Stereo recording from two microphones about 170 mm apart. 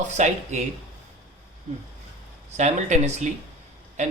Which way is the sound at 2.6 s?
45° right (ahead or behind).